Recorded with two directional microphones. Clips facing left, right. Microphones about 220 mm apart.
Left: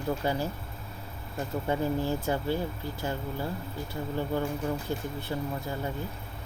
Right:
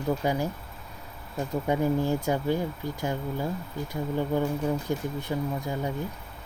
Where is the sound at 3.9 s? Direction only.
15° right (ahead or behind).